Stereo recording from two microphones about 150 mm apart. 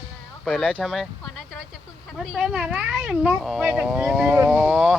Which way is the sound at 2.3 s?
5° right (ahead or behind).